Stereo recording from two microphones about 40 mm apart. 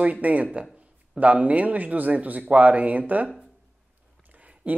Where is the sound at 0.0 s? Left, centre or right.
Right.